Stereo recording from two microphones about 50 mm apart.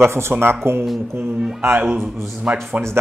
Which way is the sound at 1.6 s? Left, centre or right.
Right.